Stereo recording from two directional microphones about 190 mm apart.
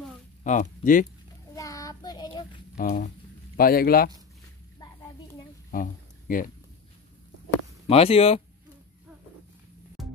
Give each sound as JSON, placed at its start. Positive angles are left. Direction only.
{"t": 0.4, "sound": "speech", "side_deg": 40}
{"t": 1.5, "sound": "child singing", "side_deg": 15}
{"t": 2.8, "sound": "speech", "side_deg": 40}
{"t": 3.5, "sound": "speech", "side_deg": 50}
{"t": 5.7, "sound": "a sound", "side_deg": 45}
{"t": 7.8, "sound": "speech", "side_deg": 30}
{"t": 10.0, "sound": "music", "side_deg": 0}